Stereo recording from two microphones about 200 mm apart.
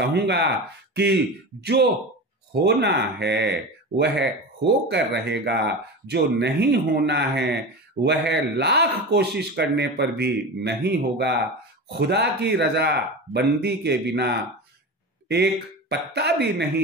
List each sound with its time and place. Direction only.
0.0 s speech: 55° right (ahead or behind)